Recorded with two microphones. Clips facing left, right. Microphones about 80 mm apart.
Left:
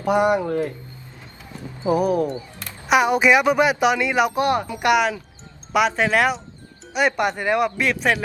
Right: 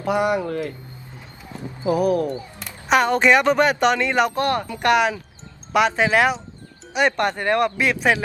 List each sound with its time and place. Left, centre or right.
0.0 s speech: left
1.8 s speech: left
2.9 s speech: centre